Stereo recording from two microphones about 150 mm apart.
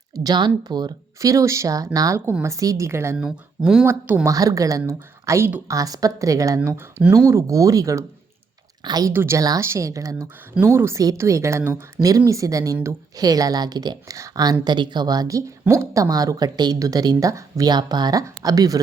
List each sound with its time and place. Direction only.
0.1 s a woman's voice: 25° right (ahead or behind)
3.2 s a woman's voice: 5° right (ahead or behind); by 6.6 s 20° right (ahead or behind)
6.6 s speech: 10° right (ahead or behind)
7.3 s a woman's voice: 20° right (ahead or behind)